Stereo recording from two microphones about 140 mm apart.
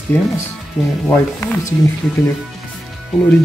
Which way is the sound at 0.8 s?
5° right (ahead or behind).